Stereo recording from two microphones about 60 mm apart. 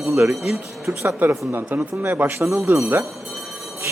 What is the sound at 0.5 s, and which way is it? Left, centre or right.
Speech, right.